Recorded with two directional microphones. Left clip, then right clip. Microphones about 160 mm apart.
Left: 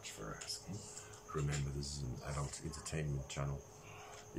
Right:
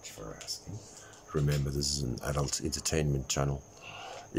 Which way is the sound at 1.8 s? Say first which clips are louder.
Right 13 dB; 85° right.